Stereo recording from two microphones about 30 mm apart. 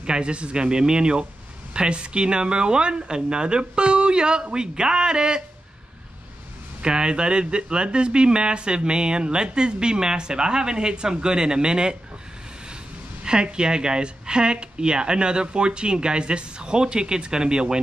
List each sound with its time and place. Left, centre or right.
0.0 s speech: right
6.8 s speech: right
13.2 s speech: right